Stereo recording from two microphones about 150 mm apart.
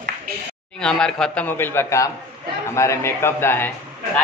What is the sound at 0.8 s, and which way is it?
A man's voice, 5° left (ahead or behind).